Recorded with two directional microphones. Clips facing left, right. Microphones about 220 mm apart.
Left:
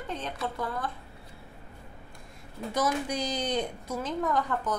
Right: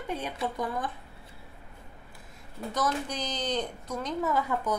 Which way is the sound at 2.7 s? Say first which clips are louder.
Left 2 dB; 10° left (ahead or behind).